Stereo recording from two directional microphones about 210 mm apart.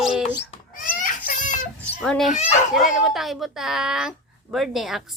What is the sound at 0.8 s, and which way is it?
Children playing, 40° left (ahead or behind).